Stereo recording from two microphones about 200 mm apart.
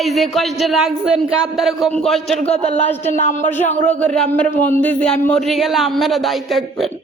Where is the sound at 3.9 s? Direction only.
5° left (ahead or behind).